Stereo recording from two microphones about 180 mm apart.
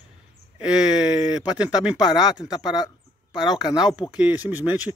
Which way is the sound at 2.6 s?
25° left (ahead or behind).